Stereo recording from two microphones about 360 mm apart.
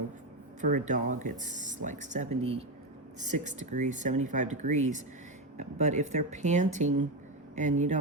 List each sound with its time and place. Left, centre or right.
0.6 s speech: right